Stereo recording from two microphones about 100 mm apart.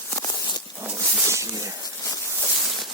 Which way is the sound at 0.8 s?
15° right (ahead or behind).